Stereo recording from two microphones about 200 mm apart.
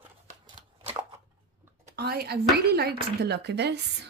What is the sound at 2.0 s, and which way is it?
Speech, 50° right (ahead or behind).